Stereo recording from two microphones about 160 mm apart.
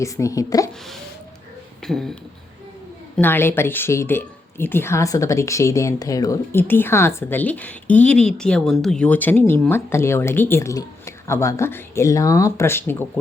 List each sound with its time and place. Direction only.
0.0 s speech: 20° left (ahead or behind)
1.8 s speech: centre (ahead or behind)
3.2 s speech: 15° left (ahead or behind)